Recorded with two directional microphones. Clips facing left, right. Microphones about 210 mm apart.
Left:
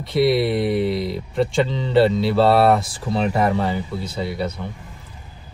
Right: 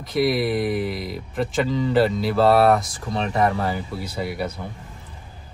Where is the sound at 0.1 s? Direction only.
Centre (ahead or behind).